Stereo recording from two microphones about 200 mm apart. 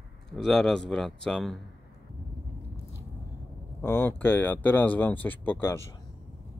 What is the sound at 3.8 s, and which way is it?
Speech, 10° left (ahead or behind).